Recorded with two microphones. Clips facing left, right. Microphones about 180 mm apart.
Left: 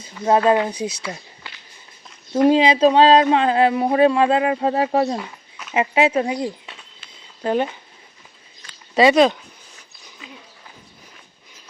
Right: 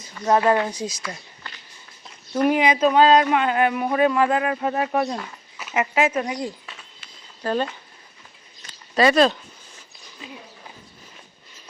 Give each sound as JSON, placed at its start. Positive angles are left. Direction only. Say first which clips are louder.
{"t": 0.3, "sound": "speech", "louder": "left 2 dB", "side_deg": 20}
{"t": 2.3, "sound": "speech", "louder": "left 4 dB", "side_deg": 25}
{"t": 9.0, "sound": "speech", "louder": "left 3 dB", "side_deg": 20}